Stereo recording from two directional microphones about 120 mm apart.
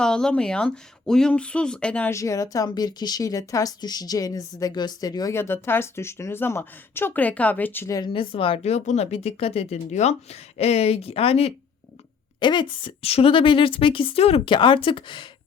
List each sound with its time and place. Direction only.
0.0 s speech: 5° left (ahead or behind)
2.0 s speech: 25° left (ahead or behind)
7.9 s speech: 45° left (ahead or behind); by 10.2 s 70° left (ahead or behind)
10.6 s speech: 60° left (ahead or behind)
12.4 s a woman's voice: 40° left (ahead or behind)